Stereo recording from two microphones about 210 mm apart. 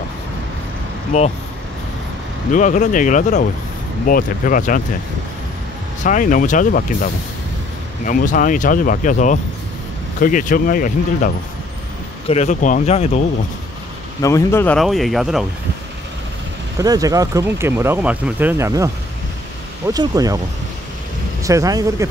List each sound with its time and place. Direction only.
1.1 s speech: 30° left (ahead or behind)
2.5 s speech: 35° left (ahead or behind)
6.0 s speech: 40° left (ahead or behind)
14.2 s speech: 15° left (ahead or behind)
16.7 s speech: 15° right (ahead or behind)
19.9 s speech: 15° right (ahead or behind)
21.4 s speech: 15° right (ahead or behind)